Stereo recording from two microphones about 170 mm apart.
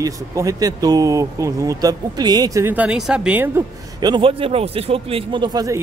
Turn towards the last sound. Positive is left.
turn(degrees=-20)  # may be behind; listen again after turning